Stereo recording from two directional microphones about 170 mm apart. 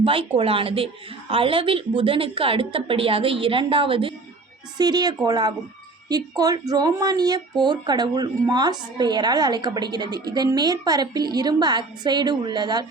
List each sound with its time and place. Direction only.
0.0 s a woman's voice: 30° right (ahead or behind)